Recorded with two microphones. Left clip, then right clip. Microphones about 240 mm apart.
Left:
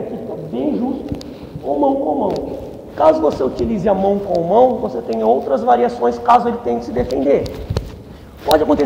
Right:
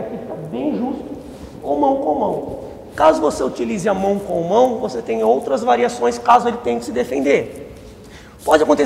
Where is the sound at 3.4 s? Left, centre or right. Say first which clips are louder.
Left 2 dB; right.